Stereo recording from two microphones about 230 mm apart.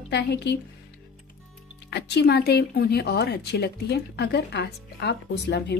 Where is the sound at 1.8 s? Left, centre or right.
Left.